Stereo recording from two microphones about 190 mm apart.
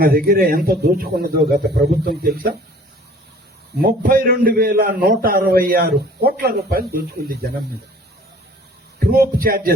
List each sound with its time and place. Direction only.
0.0 s a man's voice: 50° right (ahead or behind)
3.8 s a man's voice: 50° right (ahead or behind)
9.0 s a man's voice: 55° right (ahead or behind)